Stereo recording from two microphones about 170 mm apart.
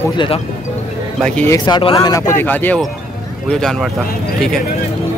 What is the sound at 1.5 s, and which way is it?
Speech, 30° left (ahead or behind).